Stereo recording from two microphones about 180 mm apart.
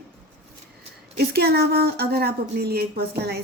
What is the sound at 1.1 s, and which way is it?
A woman's voice, 65° right (ahead or behind).